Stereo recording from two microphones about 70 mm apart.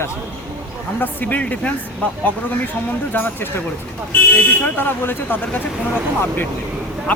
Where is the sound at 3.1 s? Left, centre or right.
Left.